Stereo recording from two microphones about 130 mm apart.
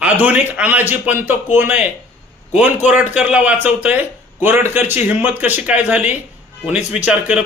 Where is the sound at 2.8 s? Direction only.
10° right (ahead or behind).